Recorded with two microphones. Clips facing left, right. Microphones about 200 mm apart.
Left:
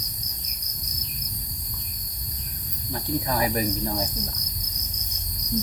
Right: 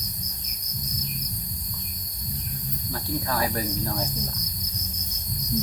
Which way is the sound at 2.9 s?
20° left (ahead or behind).